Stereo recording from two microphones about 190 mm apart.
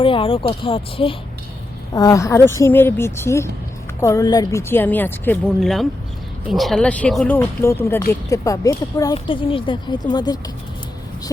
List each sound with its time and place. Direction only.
0.0 s speech: 30° left (ahead or behind)
1.9 s a woman's voice: 15° left (ahead or behind)